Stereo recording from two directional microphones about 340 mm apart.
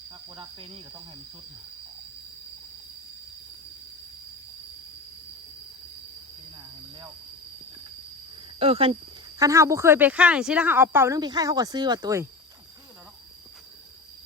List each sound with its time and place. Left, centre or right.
0.3 s a woman's voice: centre
8.5 s a woman's voice: centre